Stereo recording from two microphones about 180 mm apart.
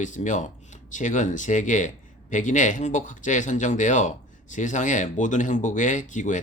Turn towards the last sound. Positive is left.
turn(degrees=45)  # may be behind; listen again after turning